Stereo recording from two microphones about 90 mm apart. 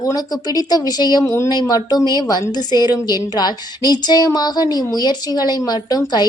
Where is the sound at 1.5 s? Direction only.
45° left (ahead or behind).